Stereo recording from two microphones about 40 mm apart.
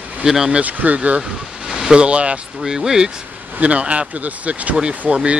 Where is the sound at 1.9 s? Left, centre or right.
Right.